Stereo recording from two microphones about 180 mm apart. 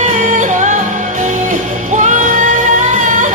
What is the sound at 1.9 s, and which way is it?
Music, 45° right (ahead or behind).